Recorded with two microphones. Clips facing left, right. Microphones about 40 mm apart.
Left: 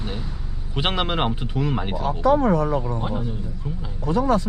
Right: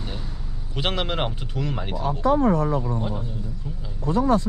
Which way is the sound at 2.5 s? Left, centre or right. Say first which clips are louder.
Left 1 dB; left.